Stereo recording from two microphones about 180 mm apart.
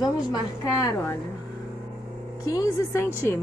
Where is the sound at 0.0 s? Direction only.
20° left (ahead or behind).